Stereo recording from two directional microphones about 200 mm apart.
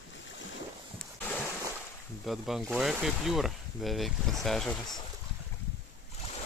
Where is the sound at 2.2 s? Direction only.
Centre (ahead or behind).